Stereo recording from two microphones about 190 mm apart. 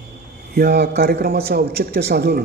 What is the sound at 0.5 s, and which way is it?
A man's voice, 55° right (ahead or behind).